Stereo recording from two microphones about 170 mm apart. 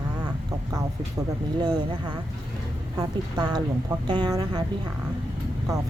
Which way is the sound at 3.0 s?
25° right (ahead or behind).